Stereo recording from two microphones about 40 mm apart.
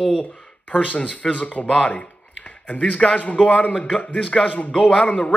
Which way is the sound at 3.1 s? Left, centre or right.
Left.